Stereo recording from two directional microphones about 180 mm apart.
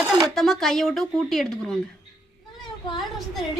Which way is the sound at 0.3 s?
Centre (ahead or behind).